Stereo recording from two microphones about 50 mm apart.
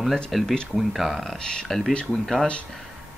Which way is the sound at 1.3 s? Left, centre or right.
Centre.